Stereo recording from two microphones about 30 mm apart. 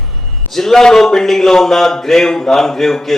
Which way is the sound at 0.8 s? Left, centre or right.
Centre.